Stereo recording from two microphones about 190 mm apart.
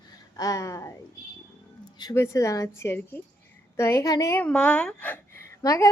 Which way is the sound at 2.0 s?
15° left (ahead or behind).